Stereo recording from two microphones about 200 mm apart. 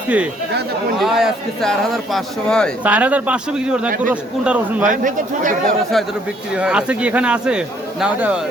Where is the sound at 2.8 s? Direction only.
5° right (ahead or behind).